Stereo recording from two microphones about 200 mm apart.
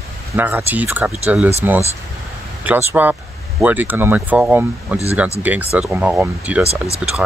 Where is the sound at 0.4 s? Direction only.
10° right (ahead or behind).